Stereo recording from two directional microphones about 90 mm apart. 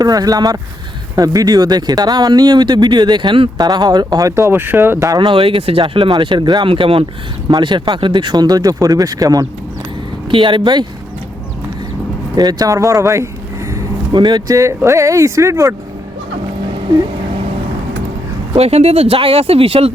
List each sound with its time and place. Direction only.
0.0 s speech: 45° right (ahead or behind); by 3.5 s 70° right (ahead or behind)
3.6 s speech: 50° right (ahead or behind)
4.4 s speech: 25° right (ahead or behind)
5.0 s speech: 50° right (ahead or behind)
5.3 s speech: 90° right; by 6.7 s 60° right (ahead or behind)
6.7 s speech: 85° right
7.4 s speech: 60° right (ahead or behind)
10.3 s speech: 65° right (ahead or behind)
12.4 s speech: 45° right (ahead or behind)
14.1 s speech: 55° right (ahead or behind)
14.5 s speech: 35° right (ahead or behind)
16.6 s a sound: 65° right (ahead or behind)
18.9 s speech: 90° right